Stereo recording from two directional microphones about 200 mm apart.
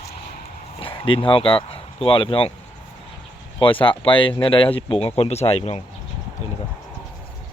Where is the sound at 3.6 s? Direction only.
25° left (ahead or behind).